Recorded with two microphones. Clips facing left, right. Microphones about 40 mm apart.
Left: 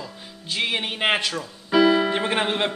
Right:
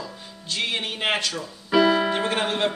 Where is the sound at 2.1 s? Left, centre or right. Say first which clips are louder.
Left 1 dB; centre.